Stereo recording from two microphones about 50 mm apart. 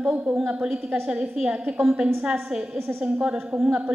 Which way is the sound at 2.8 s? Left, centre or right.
Right.